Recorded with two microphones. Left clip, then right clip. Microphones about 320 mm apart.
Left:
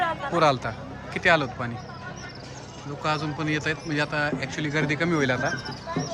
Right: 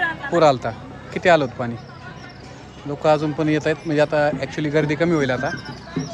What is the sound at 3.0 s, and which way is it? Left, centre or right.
Speech, centre.